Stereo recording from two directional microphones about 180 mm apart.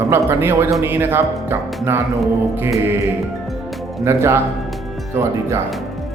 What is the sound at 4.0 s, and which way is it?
Speech, 15° right (ahead or behind).